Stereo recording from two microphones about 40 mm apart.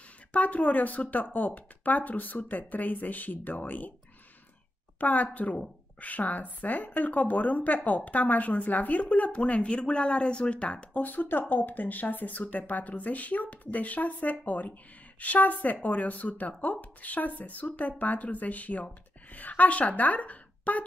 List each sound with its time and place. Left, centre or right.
0.3 s a woman's voice: left
5.0 s a woman's voice: left
11.0 s a woman's voice: left